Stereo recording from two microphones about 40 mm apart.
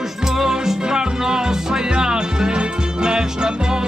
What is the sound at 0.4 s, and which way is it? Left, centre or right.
Music, centre.